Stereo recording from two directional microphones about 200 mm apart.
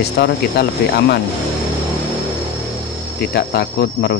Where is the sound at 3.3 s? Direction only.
55° left (ahead or behind).